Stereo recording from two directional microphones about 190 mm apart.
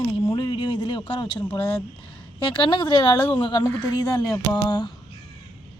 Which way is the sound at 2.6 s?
25° left (ahead or behind).